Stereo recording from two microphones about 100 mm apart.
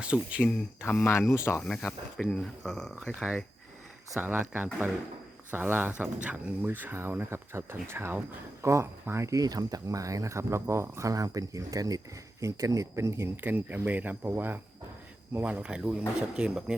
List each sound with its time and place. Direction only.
0.0 s speech: 10° right (ahead or behind)
0.8 s speech: 25° left (ahead or behind)
1.6 s speech: 5° left (ahead or behind)
4.2 s speech: 15° right (ahead or behind)